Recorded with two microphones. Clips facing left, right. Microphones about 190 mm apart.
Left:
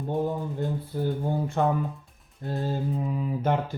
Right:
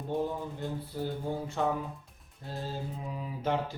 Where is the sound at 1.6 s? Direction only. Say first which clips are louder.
Left 6 dB; 55° left (ahead or behind).